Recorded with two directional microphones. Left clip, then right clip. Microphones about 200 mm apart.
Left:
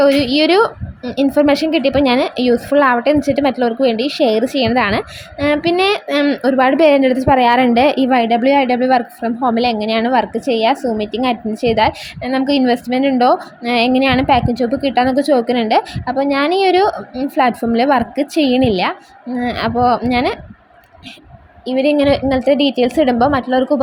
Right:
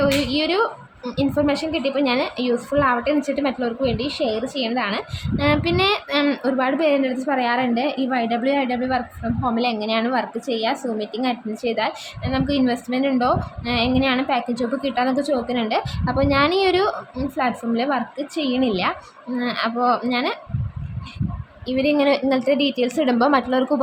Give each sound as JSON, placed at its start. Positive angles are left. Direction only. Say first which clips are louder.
{"t": 0.0, "sound": "a woman's voice", "louder": "left 8 dB", "side_deg": 30}
{"t": 21.7, "sound": "a woman's voice", "louder": "left 5 dB", "side_deg": 20}